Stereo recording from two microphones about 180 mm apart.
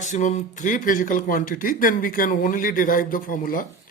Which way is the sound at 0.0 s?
45° left (ahead or behind).